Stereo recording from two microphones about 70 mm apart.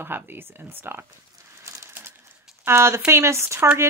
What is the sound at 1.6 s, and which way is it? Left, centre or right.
Crushing, right.